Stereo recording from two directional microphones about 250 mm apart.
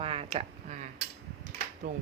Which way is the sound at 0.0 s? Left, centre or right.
Right.